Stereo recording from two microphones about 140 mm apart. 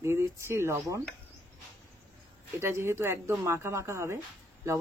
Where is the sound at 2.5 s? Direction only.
20° right (ahead or behind).